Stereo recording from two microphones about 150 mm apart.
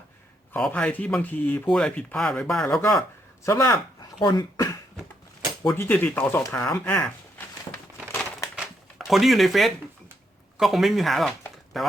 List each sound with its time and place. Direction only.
0.5 s speech: 10° left (ahead or behind)
3.4 s speech: 20° left (ahead or behind)
6.4 s crumpling: 15° left (ahead or behind)
8.5 s a sound: centre (ahead or behind)
10.6 s speech: centre (ahead or behind)